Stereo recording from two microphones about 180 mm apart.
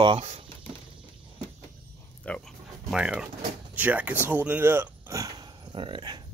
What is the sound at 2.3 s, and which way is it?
Dog, 5° left (ahead or behind).